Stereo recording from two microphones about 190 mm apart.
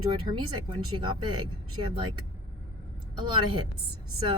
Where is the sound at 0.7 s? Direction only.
25° right (ahead or behind).